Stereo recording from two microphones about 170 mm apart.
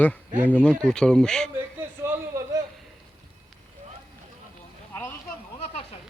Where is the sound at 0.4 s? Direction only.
10° left (ahead or behind).